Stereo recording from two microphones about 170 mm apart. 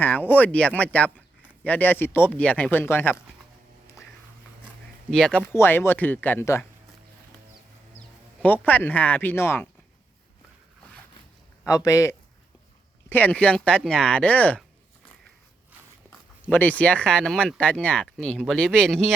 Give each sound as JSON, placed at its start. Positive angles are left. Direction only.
{"t": 0.0, "sound": "speech", "side_deg": 10}
{"t": 5.1, "sound": "speech", "side_deg": 5}
{"t": 5.5, "sound": "speech", "side_deg": 15}
{"t": 7.9, "sound": "music", "side_deg": 10}
{"t": 8.6, "sound": "speech", "side_deg": 10}
{"t": 11.6, "sound": "speech", "side_deg": 20}
{"t": 16.0, "sound": "speech", "side_deg": 10}